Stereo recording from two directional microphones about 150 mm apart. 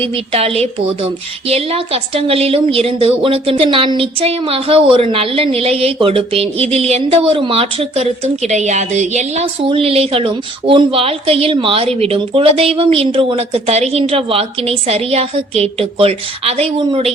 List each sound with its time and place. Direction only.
0.0 s a woman's voice: 40° right (ahead or behind)